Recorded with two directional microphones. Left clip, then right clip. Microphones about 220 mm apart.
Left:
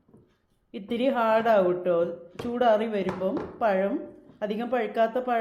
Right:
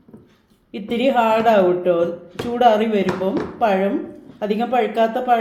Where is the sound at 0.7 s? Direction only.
20° left (ahead or behind).